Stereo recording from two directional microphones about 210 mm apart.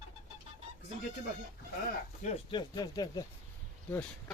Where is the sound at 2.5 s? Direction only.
20° left (ahead or behind).